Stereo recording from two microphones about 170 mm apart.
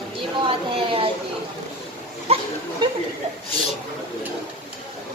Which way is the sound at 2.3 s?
35° right (ahead or behind).